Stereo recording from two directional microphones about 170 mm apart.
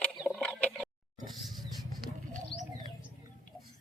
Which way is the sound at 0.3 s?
5° left (ahead or behind).